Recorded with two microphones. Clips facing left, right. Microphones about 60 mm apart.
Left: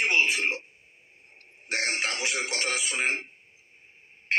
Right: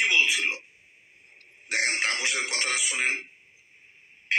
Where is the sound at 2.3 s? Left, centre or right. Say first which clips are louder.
Right 1 dB; left.